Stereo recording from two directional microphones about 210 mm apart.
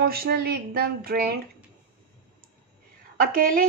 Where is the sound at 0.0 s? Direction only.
45° right (ahead or behind).